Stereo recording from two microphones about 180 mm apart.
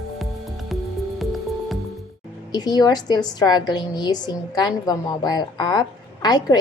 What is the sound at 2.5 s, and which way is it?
A woman's voice, 25° left (ahead or behind).